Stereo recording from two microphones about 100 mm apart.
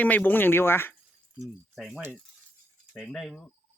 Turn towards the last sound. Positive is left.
turn(degrees=5)  # may be behind; listen again after turning